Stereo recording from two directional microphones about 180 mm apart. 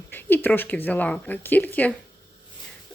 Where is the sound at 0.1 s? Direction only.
10° left (ahead or behind).